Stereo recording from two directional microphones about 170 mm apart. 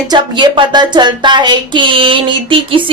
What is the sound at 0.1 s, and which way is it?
A woman's voice, 25° right (ahead or behind).